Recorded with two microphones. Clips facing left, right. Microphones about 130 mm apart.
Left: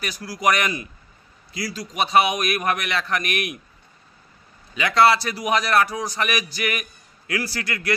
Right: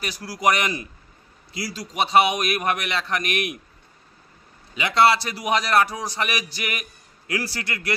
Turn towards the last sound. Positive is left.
turn(degrees=-30)  # may be behind; listen again after turning